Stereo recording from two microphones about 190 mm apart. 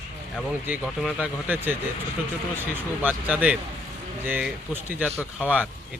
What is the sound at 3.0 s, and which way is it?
Speech, 10° right (ahead or behind).